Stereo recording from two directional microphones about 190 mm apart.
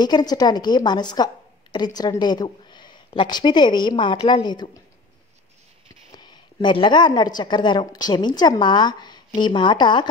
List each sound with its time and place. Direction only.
0.0 s a woman's voice: 20° left (ahead or behind)
6.1 s speech: 20° left (ahead or behind)